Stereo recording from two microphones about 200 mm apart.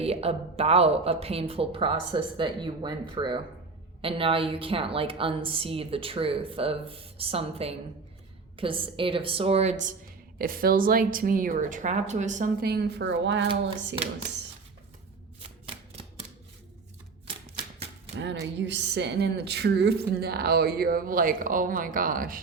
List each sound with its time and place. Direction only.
0.0 s a woman's voice: 30° right (ahead or behind)
10.3 s a woman's voice: 45° right (ahead or behind); by 13.5 s 65° right (ahead or behind)
15.4 s shuffling cards: 30° right (ahead or behind)
18.2 s a woman's voice: 60° right (ahead or behind); by 22.4 s 45° right (ahead or behind)